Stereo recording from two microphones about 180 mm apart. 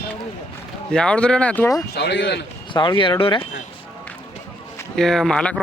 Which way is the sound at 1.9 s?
75° left (ahead or behind).